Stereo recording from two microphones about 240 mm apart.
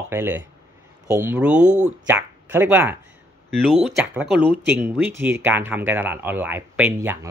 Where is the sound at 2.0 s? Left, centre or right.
Centre.